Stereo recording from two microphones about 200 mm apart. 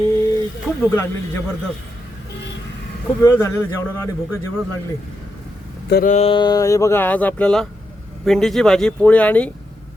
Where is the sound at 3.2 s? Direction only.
15° left (ahead or behind).